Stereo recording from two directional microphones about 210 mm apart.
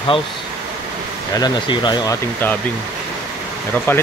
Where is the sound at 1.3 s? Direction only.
20° left (ahead or behind).